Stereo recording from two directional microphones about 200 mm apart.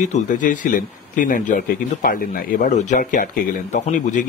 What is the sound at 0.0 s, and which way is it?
A man's voice, 40° left (ahead or behind).